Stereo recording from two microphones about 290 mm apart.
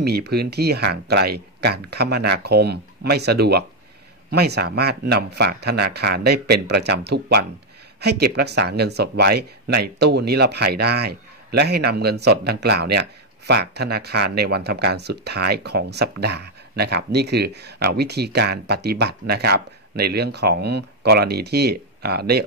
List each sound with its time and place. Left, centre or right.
0.0 s speech: right